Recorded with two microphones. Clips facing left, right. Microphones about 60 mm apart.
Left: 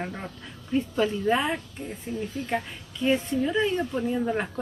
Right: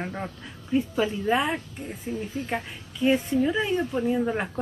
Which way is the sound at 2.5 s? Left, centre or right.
Centre.